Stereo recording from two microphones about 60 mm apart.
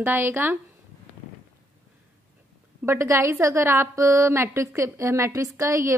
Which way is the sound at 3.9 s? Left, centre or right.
Right.